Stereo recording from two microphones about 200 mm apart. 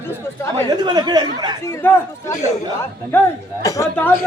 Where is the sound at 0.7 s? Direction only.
20° right (ahead or behind).